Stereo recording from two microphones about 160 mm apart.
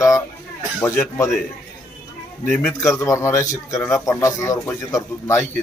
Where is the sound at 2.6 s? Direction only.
15° left (ahead or behind).